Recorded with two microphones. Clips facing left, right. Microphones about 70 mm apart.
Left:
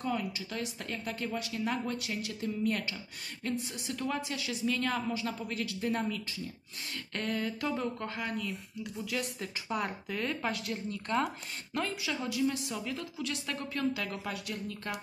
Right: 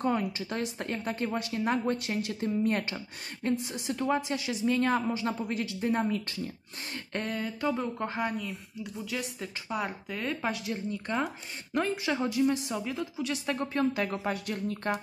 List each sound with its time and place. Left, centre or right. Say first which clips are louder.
0.0 s speech: right 5 dB; right
3.4 s a woman's voice: right 5 dB; right
6.2 s speech: right 4 dB; right
7.2 s mantra: right 1 dB; centre
9.0 s speech: even; centre
10.5 s mantra: right 3 dB; centre
12.0 s a woman's voice: right 5 dB; right
13.6 s speech: right 5 dB; right